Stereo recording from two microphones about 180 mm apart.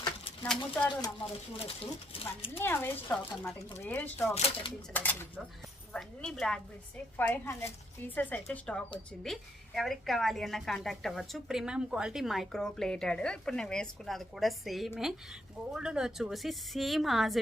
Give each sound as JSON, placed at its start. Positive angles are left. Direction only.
{"t": 0.4, "sound": "a woman's voice", "side_deg": 5}
{"t": 1.5, "sound": "speech", "side_deg": 30}
{"t": 2.6, "sound": "speech", "side_deg": 10}
{"t": 4.4, "sound": "speech", "side_deg": 35}
{"t": 5.9, "sound": "a woman's voice", "side_deg": 5}